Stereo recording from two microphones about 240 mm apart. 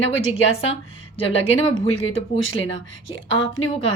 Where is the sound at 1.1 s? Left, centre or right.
Left.